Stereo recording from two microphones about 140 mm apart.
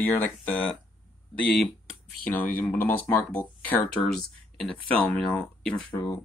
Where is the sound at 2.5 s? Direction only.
15° left (ahead or behind).